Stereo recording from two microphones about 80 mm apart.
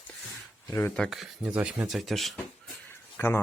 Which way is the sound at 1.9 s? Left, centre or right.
Centre.